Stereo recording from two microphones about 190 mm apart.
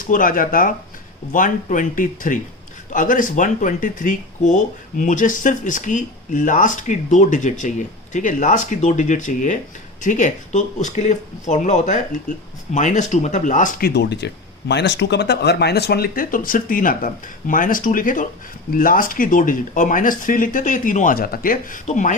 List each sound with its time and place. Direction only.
0.0 s speech: 45° left (ahead or behind)